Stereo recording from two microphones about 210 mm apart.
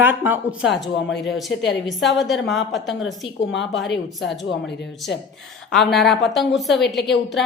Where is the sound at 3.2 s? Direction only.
60° left (ahead or behind).